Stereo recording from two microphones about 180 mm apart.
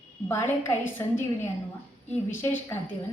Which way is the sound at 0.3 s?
15° left (ahead or behind).